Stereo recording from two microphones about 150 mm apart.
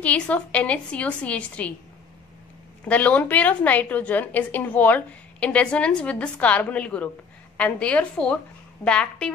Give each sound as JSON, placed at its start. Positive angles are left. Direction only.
{"t": 0.0, "sound": "a woman's voice", "side_deg": 10}
{"t": 2.8, "sound": "a woman's voice", "side_deg": 10}